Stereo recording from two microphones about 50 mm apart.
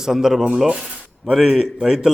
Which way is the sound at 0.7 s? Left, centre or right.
Right.